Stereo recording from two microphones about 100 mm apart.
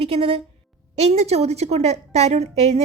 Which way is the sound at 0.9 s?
90° right.